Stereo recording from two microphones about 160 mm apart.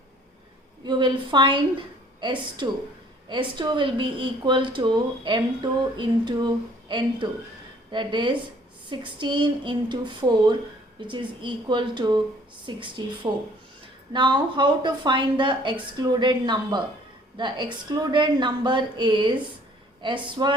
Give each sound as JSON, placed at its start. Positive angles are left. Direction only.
{"t": 0.9, "sound": "a woman's voice", "side_deg": -30}